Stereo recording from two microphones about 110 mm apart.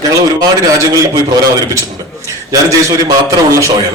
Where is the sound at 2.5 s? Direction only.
30° right (ahead or behind).